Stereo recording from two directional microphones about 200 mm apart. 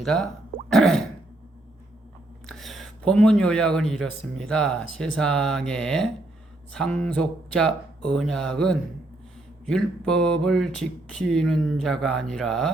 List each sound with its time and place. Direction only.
0.0 s speech: centre (ahead or behind)
2.5 s speech: centre (ahead or behind)